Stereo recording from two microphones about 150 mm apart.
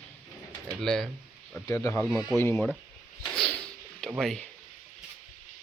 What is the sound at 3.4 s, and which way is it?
Whip, 5° left (ahead or behind).